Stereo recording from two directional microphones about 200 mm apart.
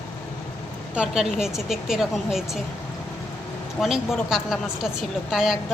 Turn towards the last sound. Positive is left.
turn(degrees=0)  # may be behind; listen again after turning